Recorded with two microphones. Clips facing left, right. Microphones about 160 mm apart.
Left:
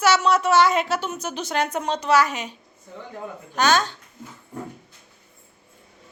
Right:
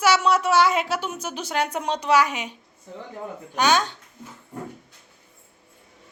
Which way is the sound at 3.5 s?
15° right (ahead or behind).